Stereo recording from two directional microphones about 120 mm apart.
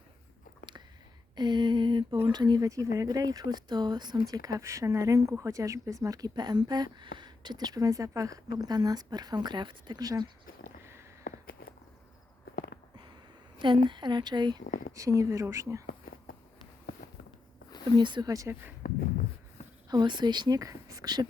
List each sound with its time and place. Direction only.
1.4 s a sound: 40° right (ahead or behind)
2.2 s speech: 35° right (ahead or behind)
13.6 s speech: 40° right (ahead or behind); by 15.8 s 25° right (ahead or behind)
17.9 s speech: 40° right (ahead or behind)
18.3 s speech: 25° right (ahead or behind)
18.8 s a sound: 90° left
19.9 s speech: 40° right (ahead or behind)